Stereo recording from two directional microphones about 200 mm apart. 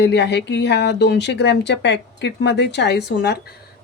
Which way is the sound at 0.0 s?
60° left (ahead or behind).